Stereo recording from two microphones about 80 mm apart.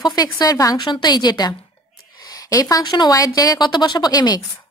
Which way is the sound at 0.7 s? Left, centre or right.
Left.